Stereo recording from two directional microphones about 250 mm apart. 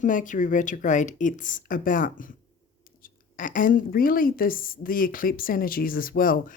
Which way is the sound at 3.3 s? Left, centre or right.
Left.